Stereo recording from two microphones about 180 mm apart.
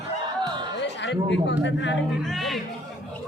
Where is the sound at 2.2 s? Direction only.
Centre (ahead or behind).